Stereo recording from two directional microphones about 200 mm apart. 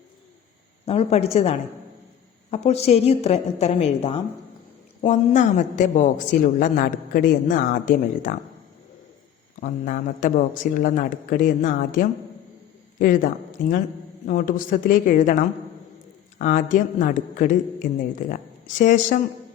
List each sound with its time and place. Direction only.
0.9 s a woman's voice: 30° left (ahead or behind)
9.6 s a woman's voice: 40° left (ahead or behind)